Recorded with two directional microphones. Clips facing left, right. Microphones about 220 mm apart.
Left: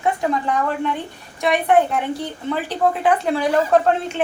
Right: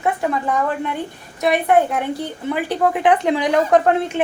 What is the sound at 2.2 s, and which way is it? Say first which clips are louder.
A woman's voice: right 1 dB; 10° right (ahead or behind).